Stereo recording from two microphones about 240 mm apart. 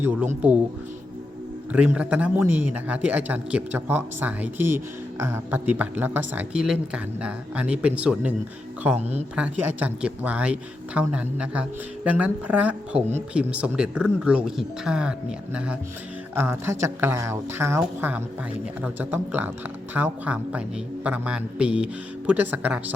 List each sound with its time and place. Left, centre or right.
0.4 s speech: centre
1.7 s speech: centre
9.0 s speech: right
9.3 s speech: centre
16.3 s speech: centre